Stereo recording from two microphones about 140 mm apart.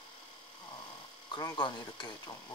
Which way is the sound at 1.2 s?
30° left (ahead or behind).